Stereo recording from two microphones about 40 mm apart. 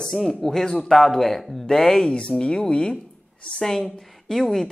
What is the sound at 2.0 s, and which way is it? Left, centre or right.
Speech, left.